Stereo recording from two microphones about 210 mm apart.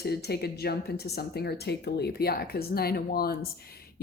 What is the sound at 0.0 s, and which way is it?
Speech, 50° left (ahead or behind).